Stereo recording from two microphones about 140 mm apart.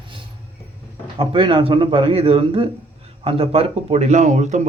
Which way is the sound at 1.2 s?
40° right (ahead or behind).